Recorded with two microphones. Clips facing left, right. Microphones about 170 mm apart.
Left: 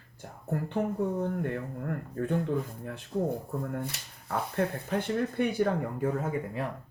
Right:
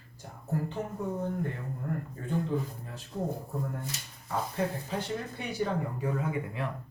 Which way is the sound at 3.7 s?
60° left (ahead or behind).